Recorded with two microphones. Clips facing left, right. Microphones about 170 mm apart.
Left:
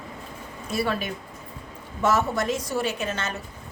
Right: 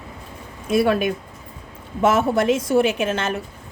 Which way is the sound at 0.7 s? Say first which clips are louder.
Right 9 dB; 55° right (ahead or behind).